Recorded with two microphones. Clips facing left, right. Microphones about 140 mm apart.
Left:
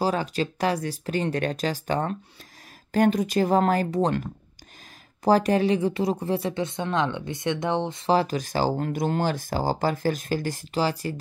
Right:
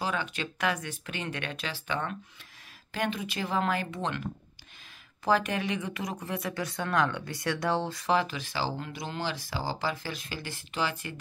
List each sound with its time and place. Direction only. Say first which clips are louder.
0.0 s speech: left 8 dB; 35° left (ahead or behind)
5.2 s speech: left 8 dB; 35° left (ahead or behind)